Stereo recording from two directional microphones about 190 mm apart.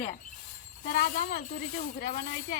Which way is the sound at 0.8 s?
55° left (ahead or behind).